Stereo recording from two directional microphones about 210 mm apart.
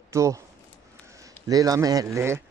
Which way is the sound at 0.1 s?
15° right (ahead or behind).